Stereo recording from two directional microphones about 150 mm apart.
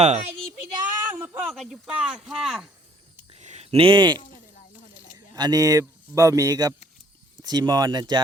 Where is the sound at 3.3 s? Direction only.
50° right (ahead or behind); by 4.2 s 30° right (ahead or behind).